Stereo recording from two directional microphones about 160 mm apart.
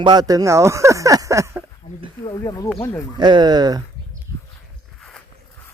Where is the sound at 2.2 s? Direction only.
25° left (ahead or behind).